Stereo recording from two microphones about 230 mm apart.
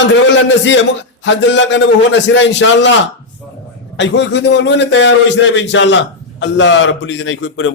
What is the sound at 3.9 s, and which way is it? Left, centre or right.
A man's voice, left.